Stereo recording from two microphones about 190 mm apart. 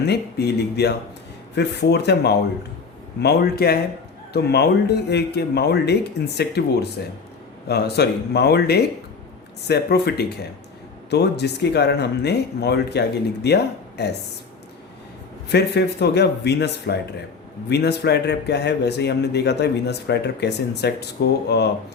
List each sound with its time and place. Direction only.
0.0 s speech: 60° left (ahead or behind)
7.7 s speech: 60° left (ahead or behind)
15.5 s speech: 60° left (ahead or behind)